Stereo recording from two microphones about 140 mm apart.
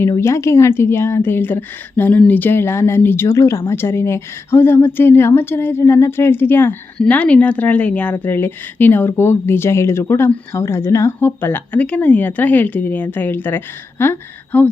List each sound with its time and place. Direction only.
0.2 s a woman's voice: 20° left (ahead or behind)